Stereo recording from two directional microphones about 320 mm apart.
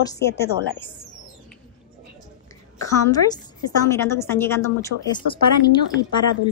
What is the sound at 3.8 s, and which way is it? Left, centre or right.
Speech, centre.